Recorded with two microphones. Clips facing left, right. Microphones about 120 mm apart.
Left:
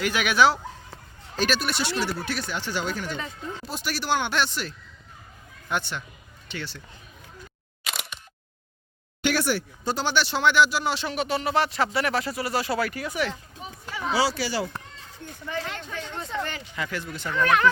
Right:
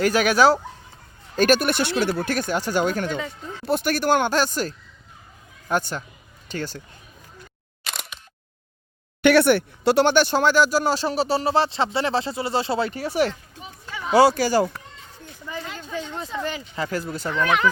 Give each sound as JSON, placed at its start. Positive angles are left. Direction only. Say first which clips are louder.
{"t": 0.0, "sound": "speech", "louder": "right 4 dB", "side_deg": -40}
{"t": 1.4, "sound": "speech", "louder": "right 7 dB", "side_deg": -50}
{"t": 7.9, "sound": "single-lens reflex camera", "louder": "even", "side_deg": 0}
{"t": 9.2, "sound": "speech", "louder": "right 9 dB", "side_deg": -60}
{"t": 14.1, "sound": "speech", "louder": "right 9 dB", "side_deg": -50}
{"t": 15.4, "sound": "speech", "louder": "left 1 dB", "side_deg": -15}
{"t": 16.7, "sound": "speech", "louder": "right 5 dB", "side_deg": -35}
{"t": 17.3, "sound": "speech", "louder": "even", "side_deg": -5}